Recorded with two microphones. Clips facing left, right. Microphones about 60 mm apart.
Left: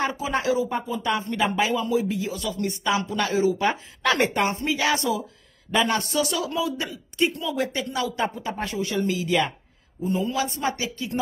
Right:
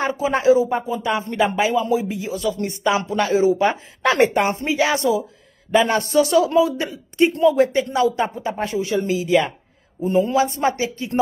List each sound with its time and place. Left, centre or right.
0.0 s speech: right
10.0 s a man's voice: right